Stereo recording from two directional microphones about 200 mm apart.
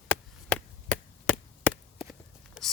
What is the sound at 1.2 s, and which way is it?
Chop, 5° left (ahead or behind).